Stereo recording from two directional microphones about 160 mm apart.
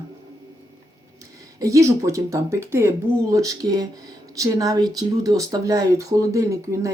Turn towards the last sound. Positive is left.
turn(degrees=-20)  # may be behind; listen again after turning